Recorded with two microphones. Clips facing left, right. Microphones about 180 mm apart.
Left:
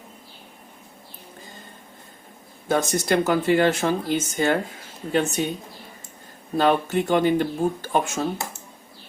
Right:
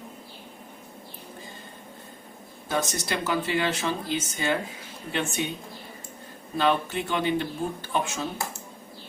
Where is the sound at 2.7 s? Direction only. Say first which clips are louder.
Left 7 dB; 50° left (ahead or behind).